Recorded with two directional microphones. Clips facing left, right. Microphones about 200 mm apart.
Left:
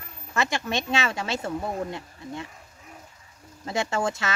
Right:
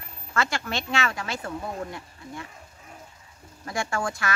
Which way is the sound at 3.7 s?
20° left (ahead or behind).